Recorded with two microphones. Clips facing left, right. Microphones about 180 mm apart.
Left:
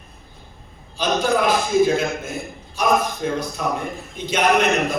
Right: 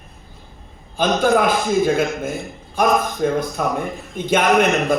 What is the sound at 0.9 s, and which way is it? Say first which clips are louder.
Speech: right 3 dB; 55° right (ahead or behind).